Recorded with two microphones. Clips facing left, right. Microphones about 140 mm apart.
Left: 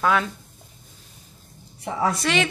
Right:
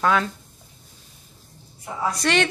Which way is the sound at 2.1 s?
Centre (ahead or behind).